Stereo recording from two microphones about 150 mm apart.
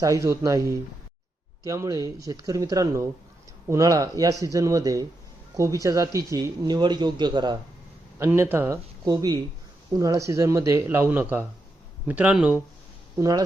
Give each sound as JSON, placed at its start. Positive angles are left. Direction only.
{"t": 0.0, "sound": "speech", "side_deg": -20}
{"t": 8.2, "sound": "speech", "side_deg": -15}
{"t": 13.1, "sound": "speech", "side_deg": -25}